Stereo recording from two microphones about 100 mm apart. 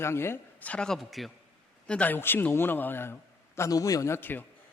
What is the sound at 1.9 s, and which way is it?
A man's voice, 15° left (ahead or behind).